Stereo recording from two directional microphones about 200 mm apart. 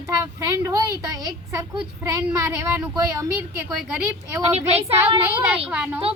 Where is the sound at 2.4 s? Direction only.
15° right (ahead or behind).